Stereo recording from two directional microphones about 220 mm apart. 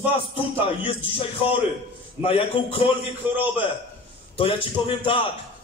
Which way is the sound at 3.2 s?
10° right (ahead or behind).